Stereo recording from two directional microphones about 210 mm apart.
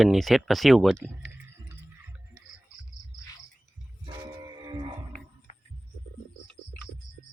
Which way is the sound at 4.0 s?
20° right (ahead or behind).